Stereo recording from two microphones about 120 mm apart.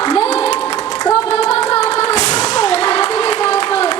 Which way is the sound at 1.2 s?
60° left (ahead or behind).